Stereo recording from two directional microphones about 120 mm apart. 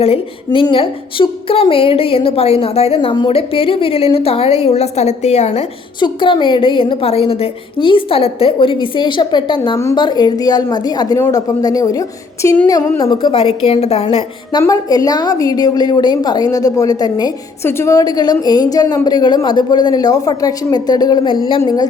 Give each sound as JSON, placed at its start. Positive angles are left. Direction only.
{"t": 0.0, "sound": "a woman's voice", "side_deg": 55}
{"t": 0.6, "sound": "a woman's voice", "side_deg": 45}
{"t": 6.0, "sound": "a woman's voice", "side_deg": 45}
{"t": 13.0, "sound": "a woman's voice", "side_deg": 40}
{"t": 14.6, "sound": "a woman's voice", "side_deg": 30}
{"t": 17.6, "sound": "a woman's voice", "side_deg": 20}